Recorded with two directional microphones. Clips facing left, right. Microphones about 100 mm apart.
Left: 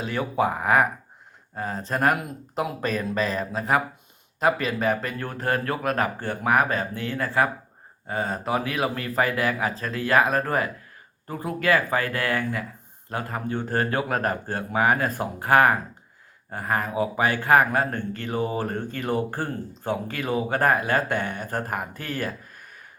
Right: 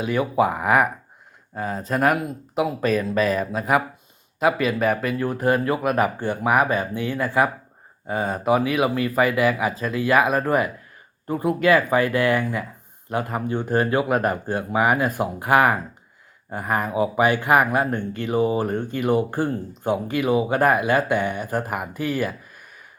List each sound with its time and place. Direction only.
0.0 s speech: 10° right (ahead or behind)